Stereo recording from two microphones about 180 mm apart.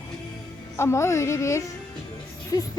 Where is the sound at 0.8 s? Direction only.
15° left (ahead or behind).